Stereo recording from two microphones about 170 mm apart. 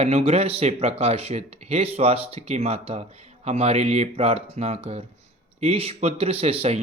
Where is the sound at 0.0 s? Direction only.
40° right (ahead or behind).